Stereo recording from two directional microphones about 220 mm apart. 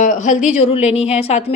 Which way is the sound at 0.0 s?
35° left (ahead or behind).